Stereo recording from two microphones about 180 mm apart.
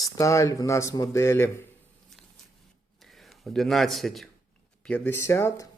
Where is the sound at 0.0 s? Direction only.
15° left (ahead or behind).